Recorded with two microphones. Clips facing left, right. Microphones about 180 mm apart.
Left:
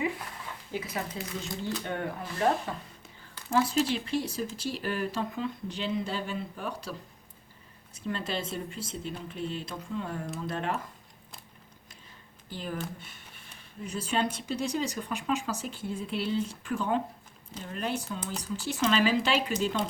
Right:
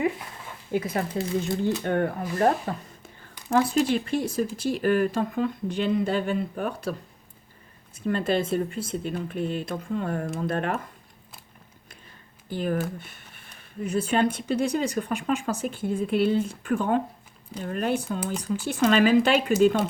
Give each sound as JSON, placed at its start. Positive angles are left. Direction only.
{"t": 0.7, "sound": "speech", "side_deg": -50}
{"t": 3.7, "sound": "speech", "side_deg": -50}
{"t": 7.9, "sound": "speech", "side_deg": -55}
{"t": 12.5, "sound": "speech", "side_deg": -55}